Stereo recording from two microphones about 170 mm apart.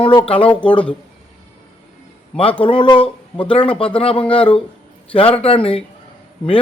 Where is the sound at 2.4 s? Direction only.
30° left (ahead or behind).